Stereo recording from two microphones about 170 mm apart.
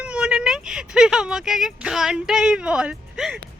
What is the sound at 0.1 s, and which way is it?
Speech, 5° right (ahead or behind).